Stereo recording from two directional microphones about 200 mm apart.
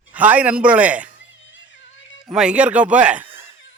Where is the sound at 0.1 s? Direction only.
5° right (ahead or behind).